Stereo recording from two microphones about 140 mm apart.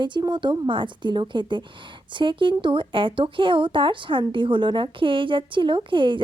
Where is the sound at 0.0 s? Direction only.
30° right (ahead or behind).